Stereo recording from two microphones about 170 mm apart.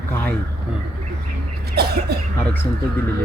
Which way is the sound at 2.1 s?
70° right (ahead or behind).